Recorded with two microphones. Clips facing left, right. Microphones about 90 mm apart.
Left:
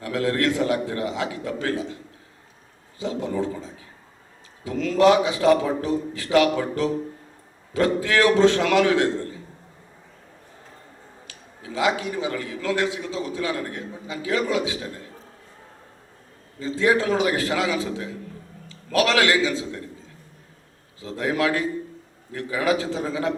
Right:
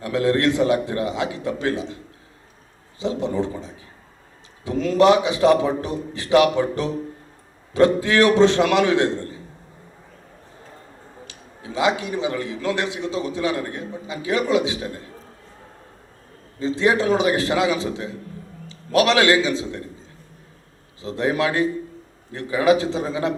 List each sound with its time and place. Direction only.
0.0 s a man's voice: 25° right (ahead or behind)
3.0 s a man's voice: 25° right (ahead or behind)
11.3 s a man's voice: 20° right (ahead or behind)
16.6 s a man's voice: 20° right (ahead or behind)
21.0 s a man's voice: 25° right (ahead or behind)